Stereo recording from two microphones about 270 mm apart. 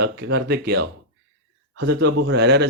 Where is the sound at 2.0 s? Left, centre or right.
Right.